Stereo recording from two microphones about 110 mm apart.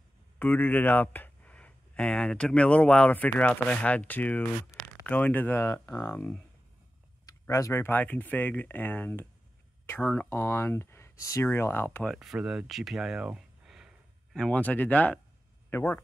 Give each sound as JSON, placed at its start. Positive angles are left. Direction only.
{"t": 0.4, "sound": "speech", "side_deg": 15}
{"t": 7.2, "sound": "speech", "side_deg": 30}
{"t": 12.0, "sound": "speech", "side_deg": 0}
{"t": 14.3, "sound": "speech", "side_deg": 10}